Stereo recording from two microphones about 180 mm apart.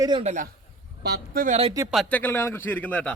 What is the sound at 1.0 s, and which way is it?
Speech, 60° right (ahead or behind).